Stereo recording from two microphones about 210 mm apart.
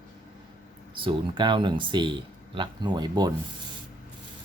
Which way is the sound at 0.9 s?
25° right (ahead or behind).